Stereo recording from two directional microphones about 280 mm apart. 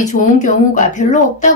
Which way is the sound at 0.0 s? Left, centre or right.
Left.